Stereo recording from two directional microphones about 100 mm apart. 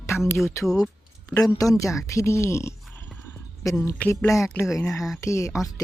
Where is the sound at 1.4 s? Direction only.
35° left (ahead or behind).